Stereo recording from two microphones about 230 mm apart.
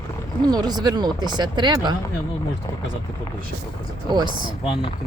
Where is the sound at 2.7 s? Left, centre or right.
Centre.